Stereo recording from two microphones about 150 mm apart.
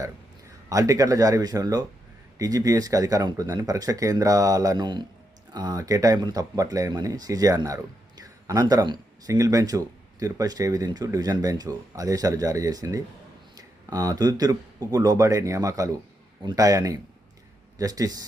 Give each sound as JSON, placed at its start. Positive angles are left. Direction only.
{"t": 0.7, "sound": "speech", "side_deg": -20}